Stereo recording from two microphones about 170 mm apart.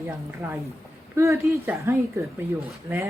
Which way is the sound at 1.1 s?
15° right (ahead or behind).